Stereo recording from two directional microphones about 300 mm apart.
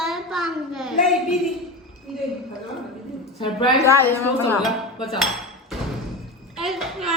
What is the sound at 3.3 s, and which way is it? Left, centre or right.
Speech, centre.